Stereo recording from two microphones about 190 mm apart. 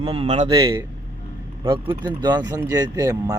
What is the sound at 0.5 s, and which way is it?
Speech, 15° right (ahead or behind).